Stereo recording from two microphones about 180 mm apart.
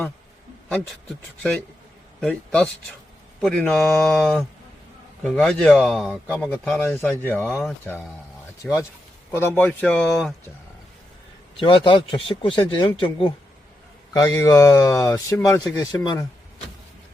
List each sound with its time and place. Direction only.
0.7 s speech: 5° left (ahead or behind)
8.6 s speech: centre (ahead or behind)
9.3 s speech: 15° left (ahead or behind)
11.6 s speech: 25° left (ahead or behind)